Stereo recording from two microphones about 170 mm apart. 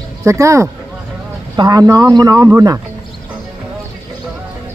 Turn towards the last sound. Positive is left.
turn(degrees=-20)  # may be behind; listen again after turning